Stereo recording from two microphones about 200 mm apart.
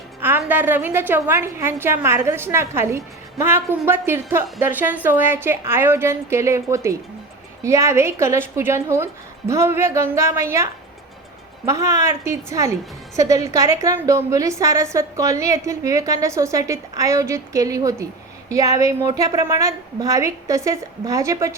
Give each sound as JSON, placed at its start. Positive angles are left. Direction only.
{"t": 0.2, "sound": "a woman's voice", "side_deg": -10}